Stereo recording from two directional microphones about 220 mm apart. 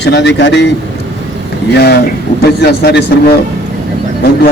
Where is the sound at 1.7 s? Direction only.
45° left (ahead or behind).